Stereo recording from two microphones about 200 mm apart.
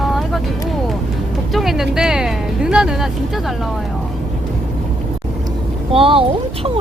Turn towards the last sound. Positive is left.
turn(degrees=-25)  # may be behind; listen again after turning